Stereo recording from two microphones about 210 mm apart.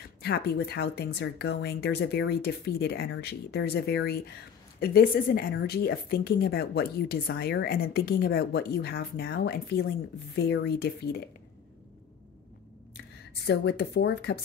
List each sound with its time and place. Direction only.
0.2 s a woman's voice: 50° left (ahead or behind)
13.5 s a woman's voice: 55° left (ahead or behind)